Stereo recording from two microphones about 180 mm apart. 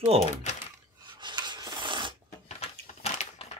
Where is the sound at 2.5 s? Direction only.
35° left (ahead or behind).